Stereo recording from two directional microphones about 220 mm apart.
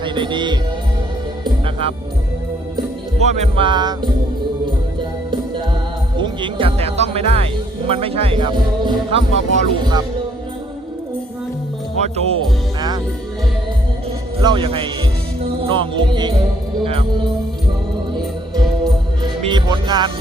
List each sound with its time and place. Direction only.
0.0 s music: 20° right (ahead or behind)
1.5 s speech: 25° right (ahead or behind)
2.7 s music: 30° right (ahead or behind)
6.1 s music: 20° right (ahead or behind)
7.9 s speech: 25° right (ahead or behind)
11.9 s speech: 30° right (ahead or behind)
14.4 s speech: 25° right (ahead or behind)
15.4 s music: 25° right (ahead or behind)
19.4 s speech: 20° right (ahead or behind)